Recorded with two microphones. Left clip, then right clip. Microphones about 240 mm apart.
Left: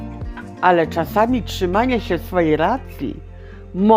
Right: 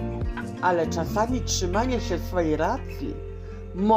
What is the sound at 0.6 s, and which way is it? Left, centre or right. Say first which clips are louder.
A man's voice: left 8 dB; left.